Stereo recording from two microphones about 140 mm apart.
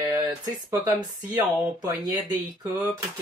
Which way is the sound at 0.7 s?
30° right (ahead or behind).